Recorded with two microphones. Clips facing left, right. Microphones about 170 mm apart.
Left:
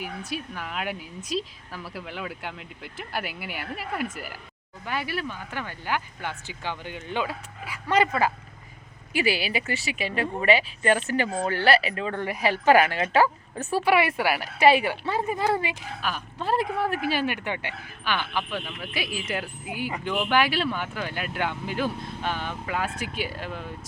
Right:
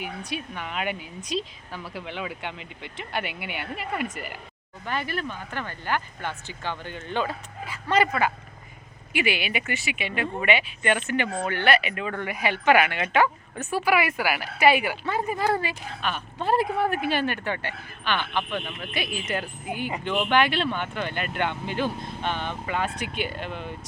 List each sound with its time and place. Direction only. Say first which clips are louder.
0.0 s a woman's voice: even; centre (ahead or behind)
8.0 s a woman's voice: even; 30° left (ahead or behind)
16.0 s a woman's voice: right 4 dB; centre (ahead or behind)